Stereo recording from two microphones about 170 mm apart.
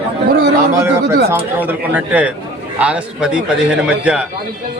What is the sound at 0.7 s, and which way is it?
A man's voice, 15° right (ahead or behind).